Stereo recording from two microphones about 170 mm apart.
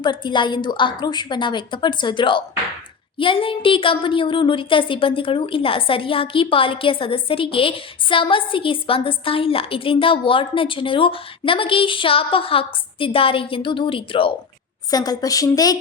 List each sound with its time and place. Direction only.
0.0 s a woman's voice: 25° left (ahead or behind)